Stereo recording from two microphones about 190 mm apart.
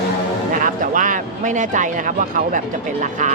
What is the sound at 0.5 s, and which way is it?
Speech, 45° right (ahead or behind).